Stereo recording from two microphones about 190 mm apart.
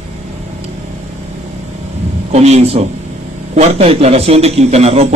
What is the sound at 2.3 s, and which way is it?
A man's voice, 35° right (ahead or behind).